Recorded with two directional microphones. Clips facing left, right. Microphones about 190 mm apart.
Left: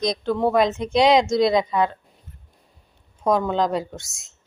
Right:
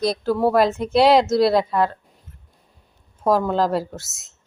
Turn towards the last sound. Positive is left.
turn(degrees=-5)  # may be behind; listen again after turning